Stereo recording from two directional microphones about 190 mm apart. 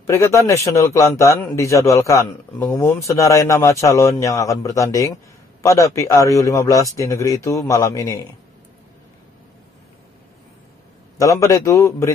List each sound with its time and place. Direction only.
0.0 s a man's voice: 15° left (ahead or behind)
11.1 s a man's voice: 15° left (ahead or behind)